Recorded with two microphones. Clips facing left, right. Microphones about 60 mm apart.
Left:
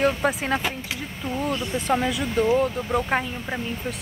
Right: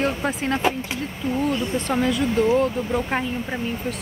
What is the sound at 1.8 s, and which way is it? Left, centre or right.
Speech, centre.